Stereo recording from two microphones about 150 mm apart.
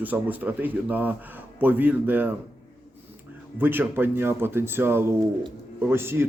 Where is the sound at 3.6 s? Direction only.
15° right (ahead or behind).